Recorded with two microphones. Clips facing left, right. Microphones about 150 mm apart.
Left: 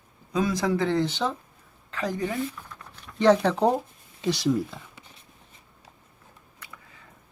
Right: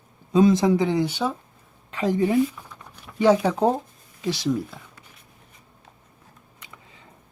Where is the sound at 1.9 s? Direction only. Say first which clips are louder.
Right 8 dB; 20° right (ahead or behind).